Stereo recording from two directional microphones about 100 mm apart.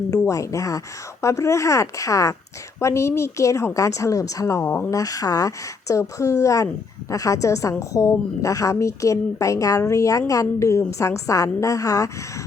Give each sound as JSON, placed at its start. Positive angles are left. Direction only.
{"t": 0.1, "sound": "a woman's voice", "side_deg": 35}
{"t": 4.9, "sound": "a woman's voice", "side_deg": 35}